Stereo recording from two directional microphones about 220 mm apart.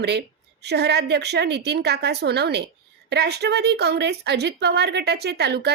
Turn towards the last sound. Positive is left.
turn(degrees=-50)  # may be behind; listen again after turning